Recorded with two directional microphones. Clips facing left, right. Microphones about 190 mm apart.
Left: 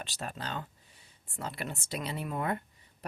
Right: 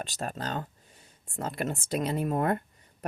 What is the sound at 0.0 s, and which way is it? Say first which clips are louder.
Speech: right 5 dB; 45° right (ahead or behind).